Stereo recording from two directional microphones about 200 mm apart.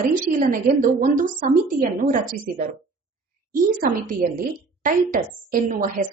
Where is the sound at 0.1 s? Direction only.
40° right (ahead or behind).